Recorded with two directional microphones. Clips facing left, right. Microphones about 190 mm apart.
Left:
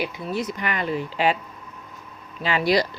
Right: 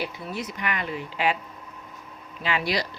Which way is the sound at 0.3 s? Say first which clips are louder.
Left 4 dB; 35° left (ahead or behind).